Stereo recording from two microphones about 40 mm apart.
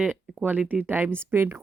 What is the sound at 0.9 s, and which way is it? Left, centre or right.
Speech, right.